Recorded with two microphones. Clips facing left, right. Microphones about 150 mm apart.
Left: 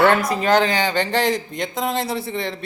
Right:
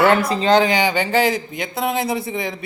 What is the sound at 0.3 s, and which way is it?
Speech, 25° right (ahead or behind).